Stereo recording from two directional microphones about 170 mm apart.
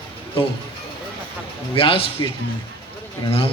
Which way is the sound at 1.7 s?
30° left (ahead or behind).